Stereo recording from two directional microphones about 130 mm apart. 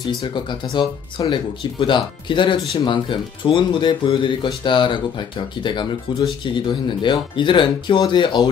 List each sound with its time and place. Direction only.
0.0 s speech: 35° left (ahead or behind)